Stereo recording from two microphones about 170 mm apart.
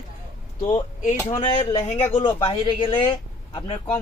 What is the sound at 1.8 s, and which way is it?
Speech, 35° left (ahead or behind).